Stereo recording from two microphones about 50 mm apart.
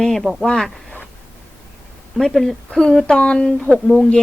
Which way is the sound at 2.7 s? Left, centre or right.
Centre.